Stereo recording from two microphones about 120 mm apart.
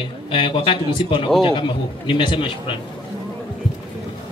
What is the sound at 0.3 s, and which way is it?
A man's voice, 45° left (ahead or behind).